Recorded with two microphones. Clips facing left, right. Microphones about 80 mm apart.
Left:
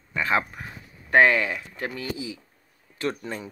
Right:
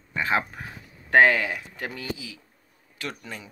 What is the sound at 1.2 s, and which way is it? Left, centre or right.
Speech, left.